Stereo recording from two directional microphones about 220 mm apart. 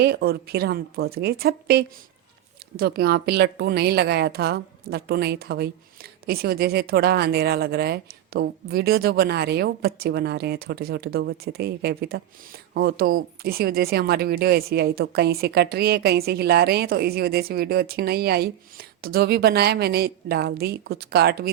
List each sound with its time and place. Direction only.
0.0 s a woman's voice: 45° right (ahead or behind)